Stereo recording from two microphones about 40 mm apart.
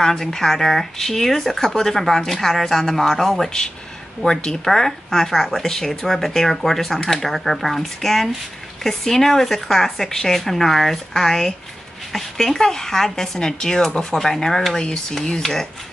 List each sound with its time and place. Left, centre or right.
0.0 s speech: centre
3.4 s speech: centre
14.8 s speech: left
15.4 s speech: centre